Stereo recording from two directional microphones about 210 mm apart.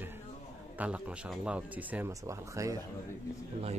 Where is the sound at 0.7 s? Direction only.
5° right (ahead or behind).